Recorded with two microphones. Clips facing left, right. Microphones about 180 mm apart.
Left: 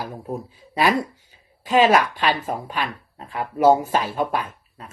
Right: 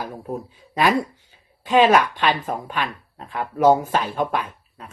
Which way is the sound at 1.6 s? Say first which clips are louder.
Right 1 dB; 40° left (ahead or behind).